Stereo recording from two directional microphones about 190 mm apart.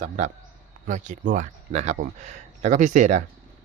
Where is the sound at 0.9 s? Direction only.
40° right (ahead or behind).